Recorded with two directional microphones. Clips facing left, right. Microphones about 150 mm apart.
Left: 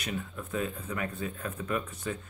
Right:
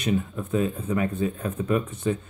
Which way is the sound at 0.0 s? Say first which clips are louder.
Right 10 dB; 25° right (ahead or behind).